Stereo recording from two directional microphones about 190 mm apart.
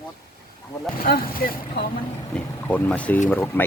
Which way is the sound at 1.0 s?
50° left (ahead or behind).